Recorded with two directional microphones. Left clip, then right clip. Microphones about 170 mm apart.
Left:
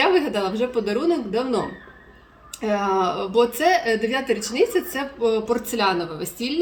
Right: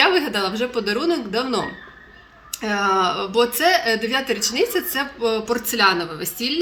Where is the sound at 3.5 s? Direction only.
5° left (ahead or behind).